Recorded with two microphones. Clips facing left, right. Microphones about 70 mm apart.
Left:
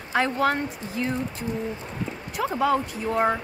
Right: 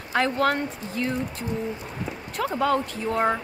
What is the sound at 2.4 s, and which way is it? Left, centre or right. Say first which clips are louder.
A woman's voice: even; centre.